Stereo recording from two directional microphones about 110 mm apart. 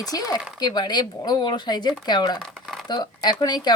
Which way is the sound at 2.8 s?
40° left (ahead or behind).